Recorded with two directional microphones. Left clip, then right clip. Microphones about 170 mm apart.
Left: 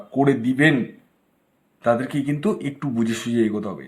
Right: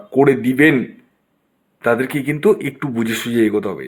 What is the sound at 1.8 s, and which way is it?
Speech, 20° right (ahead or behind).